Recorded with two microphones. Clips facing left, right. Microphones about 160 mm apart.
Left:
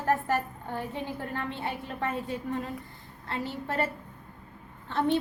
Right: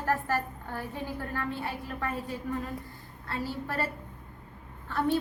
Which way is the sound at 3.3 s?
25° left (ahead or behind).